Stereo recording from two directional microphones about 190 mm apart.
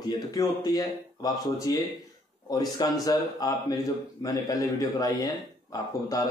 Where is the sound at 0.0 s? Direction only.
20° left (ahead or behind).